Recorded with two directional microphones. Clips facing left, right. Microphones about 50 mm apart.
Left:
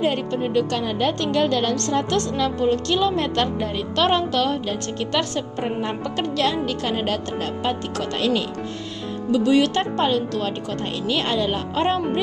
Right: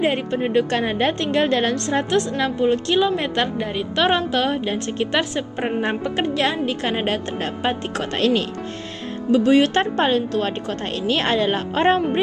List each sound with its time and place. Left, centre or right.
0.0 s a woman's voice: right
5.6 s speech: right
6.0 s a woman's voice: right
8.2 s speech: right
9.3 s speech: right